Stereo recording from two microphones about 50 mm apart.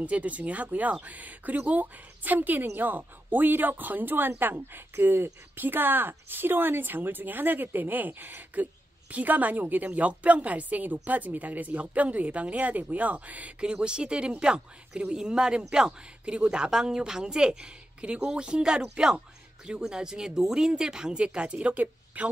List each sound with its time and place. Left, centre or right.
0.0 s a woman's voice: right
13.7 s speech: centre